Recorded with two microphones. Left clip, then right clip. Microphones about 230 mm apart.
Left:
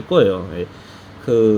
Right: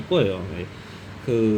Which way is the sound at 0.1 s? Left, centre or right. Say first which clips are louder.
Left 7 dB; left.